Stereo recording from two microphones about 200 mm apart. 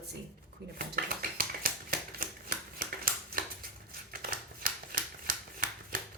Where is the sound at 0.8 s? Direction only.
45° right (ahead or behind).